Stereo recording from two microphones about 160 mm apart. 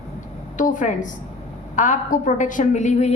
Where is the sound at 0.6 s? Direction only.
50° left (ahead or behind).